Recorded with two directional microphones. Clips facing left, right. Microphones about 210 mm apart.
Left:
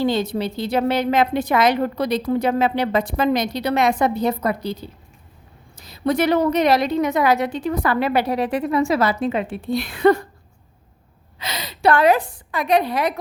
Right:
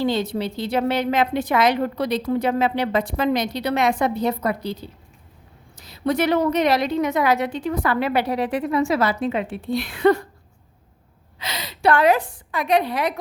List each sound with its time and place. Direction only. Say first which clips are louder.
0.0 s a woman's voice: left 2 dB; 45° left (ahead or behind)
11.3 s a woman's voice: left 1 dB; 45° left (ahead or behind)